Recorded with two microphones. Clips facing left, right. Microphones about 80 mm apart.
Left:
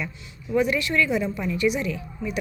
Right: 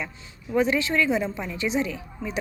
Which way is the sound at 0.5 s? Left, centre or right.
Right.